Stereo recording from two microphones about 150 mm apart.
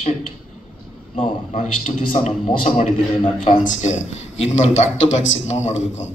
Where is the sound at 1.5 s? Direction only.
50° left (ahead or behind).